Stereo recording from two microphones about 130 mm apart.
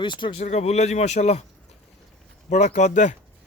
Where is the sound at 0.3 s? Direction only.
55° left (ahead or behind).